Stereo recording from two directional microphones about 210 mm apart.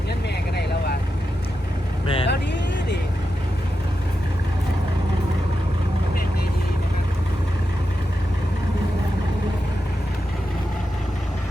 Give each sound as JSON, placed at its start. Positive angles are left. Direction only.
{"t": 2.0, "sound": "vehicle", "side_deg": 25}
{"t": 2.3, "sound": "vehicle", "side_deg": 55}